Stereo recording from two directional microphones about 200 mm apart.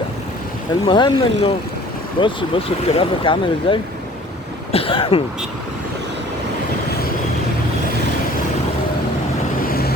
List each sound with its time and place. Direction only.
0.9 s speech: 25° left (ahead or behind)
9.6 s vehicle: 50° left (ahead or behind)